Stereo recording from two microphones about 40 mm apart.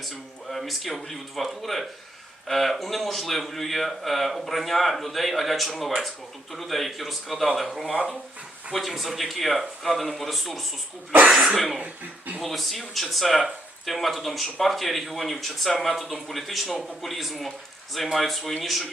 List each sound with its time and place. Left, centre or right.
0.5 s speech: centre
11.8 s speech: right
12.4 s speech: centre